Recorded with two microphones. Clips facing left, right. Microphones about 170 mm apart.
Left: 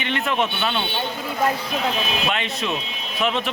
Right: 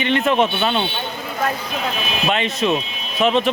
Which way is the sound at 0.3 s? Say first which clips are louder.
Right 4 dB; 35° right (ahead or behind).